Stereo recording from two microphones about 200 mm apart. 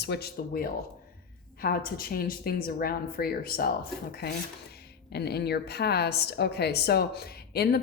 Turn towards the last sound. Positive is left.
turn(degrees=50)  # may be behind; listen again after turning